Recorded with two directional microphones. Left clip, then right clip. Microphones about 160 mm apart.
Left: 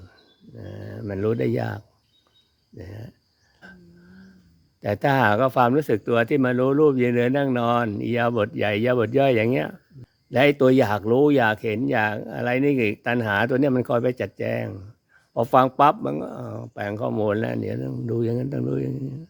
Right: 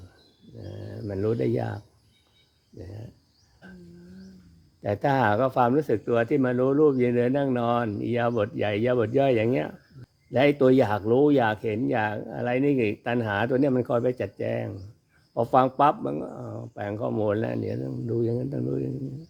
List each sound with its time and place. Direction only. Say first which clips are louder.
0.5 s dog: left 2 dB; 35° left (ahead or behind)
2.7 s a man's voice: left 2 dB; 35° left (ahead or behind)
3.6 s a sound: left 4 dB; 35° left (ahead or behind)
4.8 s a man's voice: left 3 dB; 35° left (ahead or behind)